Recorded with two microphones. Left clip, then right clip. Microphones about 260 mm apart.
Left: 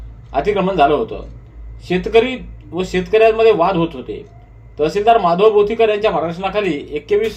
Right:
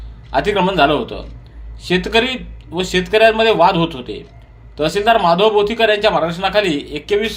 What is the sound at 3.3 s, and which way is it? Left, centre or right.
Speech, right.